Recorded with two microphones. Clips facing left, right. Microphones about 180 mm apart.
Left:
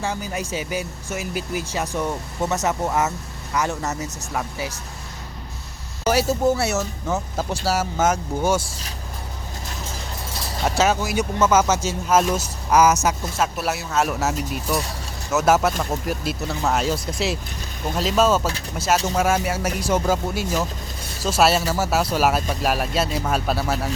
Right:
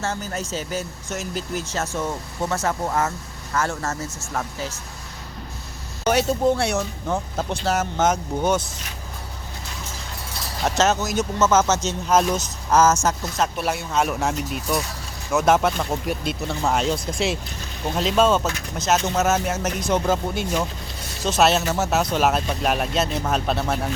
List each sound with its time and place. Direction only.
0.0 s speech: 10° left (ahead or behind)
6.1 s speech: 5° left (ahead or behind)
10.6 s speech: 5° left (ahead or behind)